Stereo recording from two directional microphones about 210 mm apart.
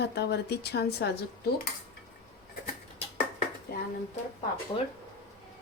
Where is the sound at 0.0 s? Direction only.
50° left (ahead or behind).